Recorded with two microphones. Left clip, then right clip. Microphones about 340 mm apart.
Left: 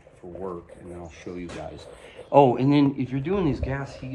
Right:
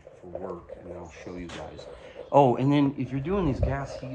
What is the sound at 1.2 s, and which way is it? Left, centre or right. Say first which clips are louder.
Speech: left 4 dB; centre.